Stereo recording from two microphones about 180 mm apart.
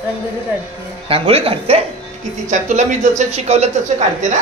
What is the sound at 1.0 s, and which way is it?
Speech, 30° right (ahead or behind).